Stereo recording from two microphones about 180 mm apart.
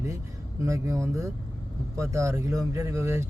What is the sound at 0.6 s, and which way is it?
Speech, 15° right (ahead or behind).